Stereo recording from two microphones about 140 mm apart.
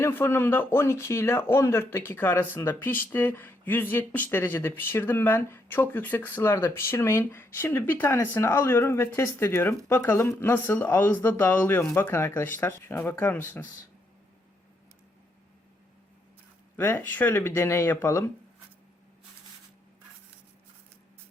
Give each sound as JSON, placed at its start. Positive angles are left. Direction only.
{"t": 0.0, "sound": "speech", "side_deg": 15}
{"t": 16.7, "sound": "speech", "side_deg": 15}